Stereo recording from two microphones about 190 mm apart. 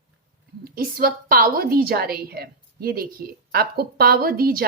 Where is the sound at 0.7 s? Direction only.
50° right (ahead or behind).